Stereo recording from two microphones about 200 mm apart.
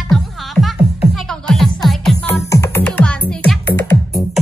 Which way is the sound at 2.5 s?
15° left (ahead or behind).